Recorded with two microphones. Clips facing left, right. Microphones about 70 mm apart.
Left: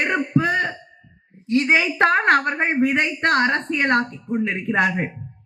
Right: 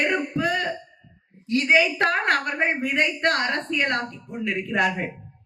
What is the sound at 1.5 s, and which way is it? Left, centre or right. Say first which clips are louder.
Speech: left 1 dB; left.